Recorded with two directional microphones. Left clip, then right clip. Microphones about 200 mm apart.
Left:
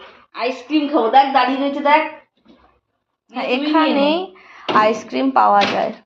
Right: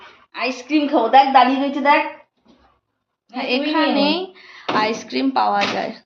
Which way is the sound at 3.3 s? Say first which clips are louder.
Left 2 dB; 5° left (ahead or behind).